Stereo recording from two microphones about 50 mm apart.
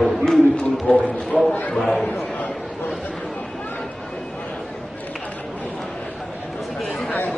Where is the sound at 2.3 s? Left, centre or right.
Centre.